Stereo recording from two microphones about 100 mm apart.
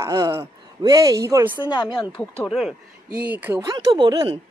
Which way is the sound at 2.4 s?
5° right (ahead or behind).